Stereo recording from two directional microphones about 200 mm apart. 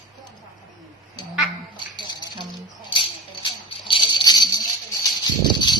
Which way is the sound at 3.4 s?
25° left (ahead or behind).